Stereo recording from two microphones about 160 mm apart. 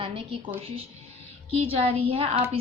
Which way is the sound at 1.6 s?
35° right (ahead or behind).